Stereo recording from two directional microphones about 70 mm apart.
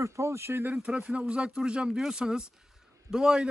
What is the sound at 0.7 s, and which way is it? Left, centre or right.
Speech, centre.